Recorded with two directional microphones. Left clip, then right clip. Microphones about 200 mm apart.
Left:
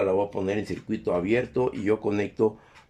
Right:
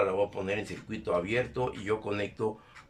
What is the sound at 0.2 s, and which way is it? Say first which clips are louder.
Speech: left 4 dB; 25° left (ahead or behind).